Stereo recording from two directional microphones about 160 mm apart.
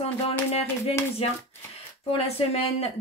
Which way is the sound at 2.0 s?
40° left (ahead or behind).